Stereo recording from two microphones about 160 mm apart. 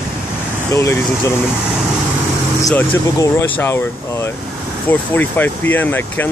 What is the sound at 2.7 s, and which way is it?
Speech, 15° left (ahead or behind).